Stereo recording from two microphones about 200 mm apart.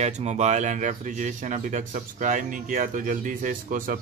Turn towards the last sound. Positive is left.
turn(degrees=-40)  # may be behind; listen again after turning